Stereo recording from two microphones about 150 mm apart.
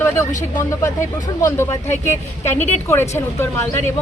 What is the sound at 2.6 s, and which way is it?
Speech, 50° left (ahead or behind).